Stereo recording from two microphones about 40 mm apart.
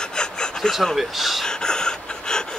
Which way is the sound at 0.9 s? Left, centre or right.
Centre.